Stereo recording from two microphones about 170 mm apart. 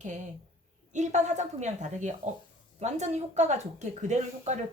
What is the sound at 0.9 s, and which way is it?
A woman's voice, 45° right (ahead or behind).